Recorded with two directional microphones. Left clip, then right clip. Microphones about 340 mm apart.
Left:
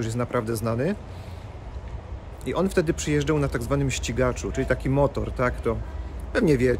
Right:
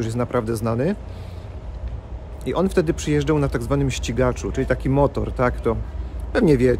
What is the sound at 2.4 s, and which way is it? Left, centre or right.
Speech, centre.